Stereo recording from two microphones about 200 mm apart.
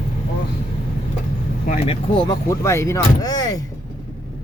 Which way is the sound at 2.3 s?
15° left (ahead or behind).